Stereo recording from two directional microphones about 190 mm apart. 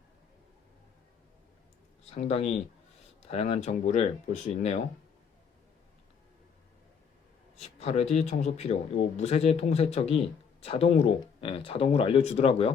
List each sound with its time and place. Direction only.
2.0 s a man's voice: 35° left (ahead or behind)
7.5 s a man's voice: 35° left (ahead or behind)